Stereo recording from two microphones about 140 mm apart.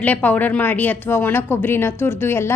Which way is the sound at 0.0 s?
10° left (ahead or behind).